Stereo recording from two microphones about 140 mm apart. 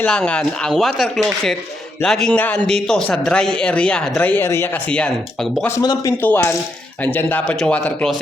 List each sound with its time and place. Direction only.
0.0 s a man's voice: 10° left (ahead or behind)
5.8 s speech: 25° left (ahead or behind)
6.2 s a man's voice: 15° left (ahead or behind)